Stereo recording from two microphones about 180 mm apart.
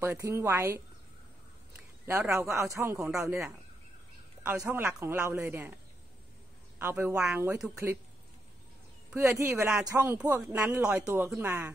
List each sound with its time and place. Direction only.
0.0 s speech: 15° right (ahead or behind)
2.3 s speech: 15° right (ahead or behind)
6.8 s speech: 15° right (ahead or behind)
9.1 s speech: 15° right (ahead or behind)